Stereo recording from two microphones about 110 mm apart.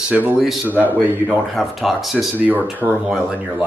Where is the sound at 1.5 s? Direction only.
Centre (ahead or behind).